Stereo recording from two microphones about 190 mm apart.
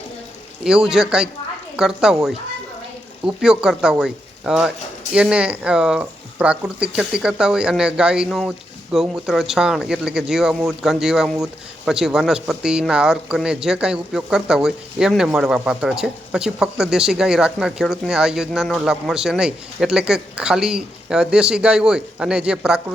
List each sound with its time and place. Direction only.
0.6 s speech: 5° right (ahead or behind)